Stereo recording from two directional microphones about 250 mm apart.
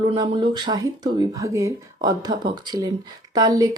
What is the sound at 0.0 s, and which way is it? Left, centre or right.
Speech, right.